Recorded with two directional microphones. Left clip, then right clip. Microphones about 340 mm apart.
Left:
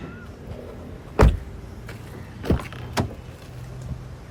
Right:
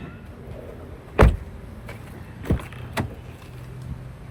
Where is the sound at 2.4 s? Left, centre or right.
Left.